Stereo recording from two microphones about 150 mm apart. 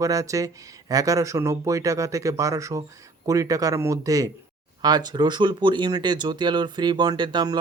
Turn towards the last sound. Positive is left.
turn(degrees=-30)  # may be behind; listen again after turning